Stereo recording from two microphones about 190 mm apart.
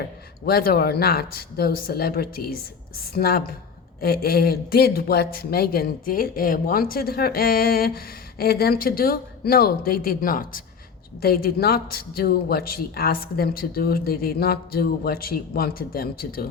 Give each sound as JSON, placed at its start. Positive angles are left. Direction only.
{"t": 0.0, "sound": "speech", "side_deg": 55}